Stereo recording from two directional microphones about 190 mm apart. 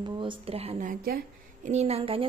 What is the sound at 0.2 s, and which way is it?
Speech, 30° right (ahead or behind).